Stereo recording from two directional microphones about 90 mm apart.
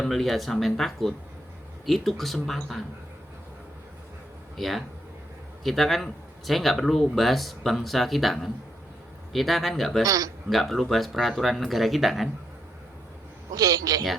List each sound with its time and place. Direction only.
0.0 s speech: centre (ahead or behind)
4.5 s speech: centre (ahead or behind)
10.0 s speech: 40° right (ahead or behind)
10.5 s speech: centre (ahead or behind)
13.6 s a man's voice: 40° right (ahead or behind)